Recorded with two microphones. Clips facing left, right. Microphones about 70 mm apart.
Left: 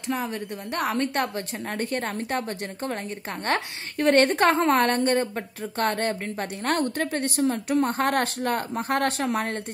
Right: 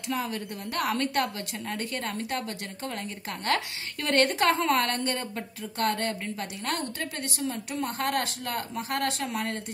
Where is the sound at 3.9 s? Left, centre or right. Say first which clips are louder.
Left 5 dB; left.